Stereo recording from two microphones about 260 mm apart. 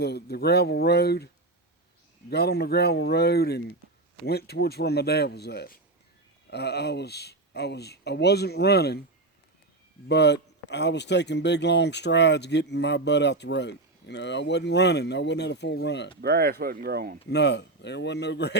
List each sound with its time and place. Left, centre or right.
0.0 s speech: left
2.3 s speech: left
10.1 s speech: left
16.2 s speech: right
17.2 s speech: left